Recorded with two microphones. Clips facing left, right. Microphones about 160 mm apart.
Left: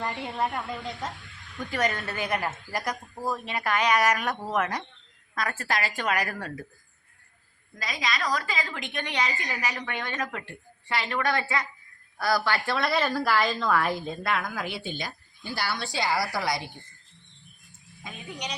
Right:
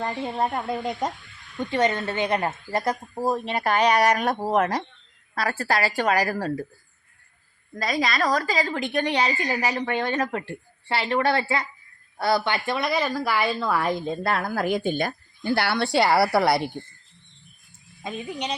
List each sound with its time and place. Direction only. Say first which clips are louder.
0.0 s a woman's voice: right 4 dB; 30° right (ahead or behind)
0.8 s a woman's voice: right 8 dB; 50° right (ahead or behind)
1.5 s a woman's voice: right 5 dB; 25° right (ahead or behind)
7.8 s a woman's voice: right 7 dB; 55° right (ahead or behind)
8.4 s a woman's voice: right 8 dB; 35° right (ahead or behind); by 13.9 s 10° right (ahead or behind)
14.1 s speech: right 4 dB; 35° right (ahead or behind); by 16.6 s 65° right (ahead or behind)